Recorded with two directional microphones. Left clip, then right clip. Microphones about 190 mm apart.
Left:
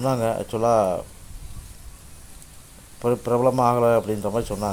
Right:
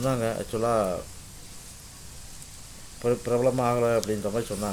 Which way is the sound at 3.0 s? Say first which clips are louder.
Left 4 dB; 15° left (ahead or behind).